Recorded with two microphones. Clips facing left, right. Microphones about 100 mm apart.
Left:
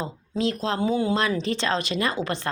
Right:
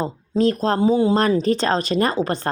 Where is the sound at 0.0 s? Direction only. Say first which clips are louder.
Right 7 dB; 45° right (ahead or behind).